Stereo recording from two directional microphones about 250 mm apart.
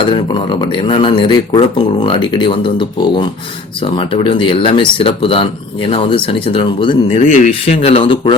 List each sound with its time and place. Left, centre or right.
0.1 s speech: centre
7.2 s speech: left